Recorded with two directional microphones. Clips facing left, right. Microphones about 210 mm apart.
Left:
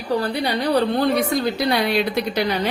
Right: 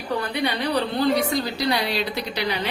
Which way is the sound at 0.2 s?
45° left (ahead or behind).